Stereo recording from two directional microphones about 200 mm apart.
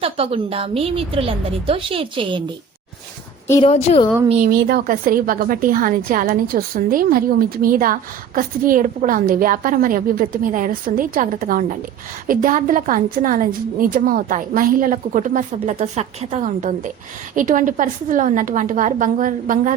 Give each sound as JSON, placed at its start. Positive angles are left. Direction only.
{"t": 0.0, "sound": "a woman's voice", "side_deg": -30}
{"t": 3.6, "sound": "a woman's voice", "side_deg": 35}
{"t": 4.3, "sound": "a woman's voice", "side_deg": -40}